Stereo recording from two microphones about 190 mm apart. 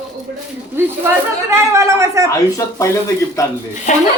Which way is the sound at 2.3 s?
15° left (ahead or behind).